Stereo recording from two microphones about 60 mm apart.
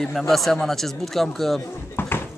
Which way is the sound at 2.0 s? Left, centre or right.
Left.